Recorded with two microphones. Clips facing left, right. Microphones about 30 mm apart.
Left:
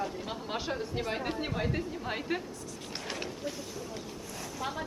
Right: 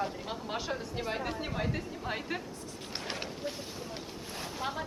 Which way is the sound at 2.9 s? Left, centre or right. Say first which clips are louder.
Even; centre.